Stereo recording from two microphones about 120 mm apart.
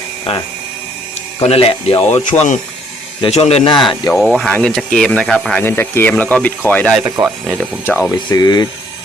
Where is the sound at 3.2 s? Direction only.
55° left (ahead or behind).